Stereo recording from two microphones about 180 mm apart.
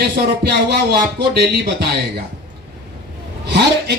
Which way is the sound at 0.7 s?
60° right (ahead or behind).